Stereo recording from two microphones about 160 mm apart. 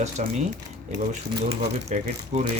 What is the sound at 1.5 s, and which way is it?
Speech, 45° right (ahead or behind).